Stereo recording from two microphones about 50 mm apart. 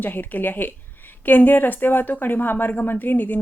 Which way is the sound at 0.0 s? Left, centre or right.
Left.